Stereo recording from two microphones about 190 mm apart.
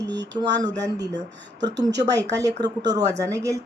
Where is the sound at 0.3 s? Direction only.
20° right (ahead or behind).